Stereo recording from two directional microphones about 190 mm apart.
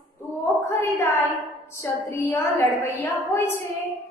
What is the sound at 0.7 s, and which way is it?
A woman's voice, 15° left (ahead or behind).